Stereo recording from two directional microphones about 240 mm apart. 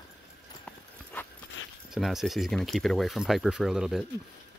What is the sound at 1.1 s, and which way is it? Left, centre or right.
Dog, centre.